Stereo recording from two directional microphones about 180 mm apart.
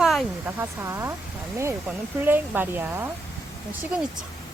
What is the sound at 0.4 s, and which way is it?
Speech, 15° right (ahead or behind).